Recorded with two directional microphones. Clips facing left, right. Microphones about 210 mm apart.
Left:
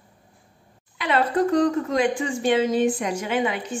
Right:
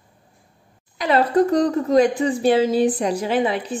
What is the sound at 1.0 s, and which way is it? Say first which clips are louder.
A woman's voice: right 4 dB; 40° right (ahead or behind).